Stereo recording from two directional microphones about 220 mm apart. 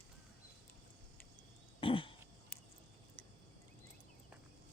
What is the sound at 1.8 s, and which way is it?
Throat clearing, 25° left (ahead or behind).